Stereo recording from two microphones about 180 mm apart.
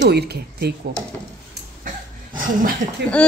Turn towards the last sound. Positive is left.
turn(degrees=5)  # may be behind; listen again after turning